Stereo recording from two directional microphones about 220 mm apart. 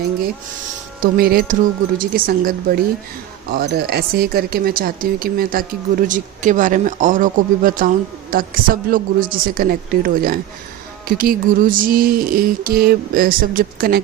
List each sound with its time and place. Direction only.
1.1 s speech: 40° right (ahead or behind)